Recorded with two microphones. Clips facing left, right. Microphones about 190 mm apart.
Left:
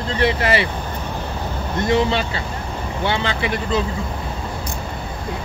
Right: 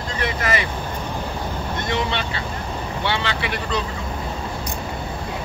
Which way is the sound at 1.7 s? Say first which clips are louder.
Left 8 dB; 30° left (ahead or behind).